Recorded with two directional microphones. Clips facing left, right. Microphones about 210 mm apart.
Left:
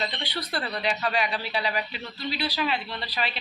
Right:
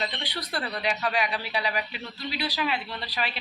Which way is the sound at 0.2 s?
15° right (ahead or behind).